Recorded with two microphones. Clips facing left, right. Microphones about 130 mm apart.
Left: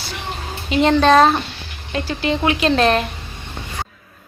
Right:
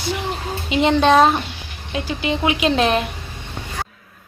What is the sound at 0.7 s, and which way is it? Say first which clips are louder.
A woman's voice: left 1 dB; 15° right (ahead or behind).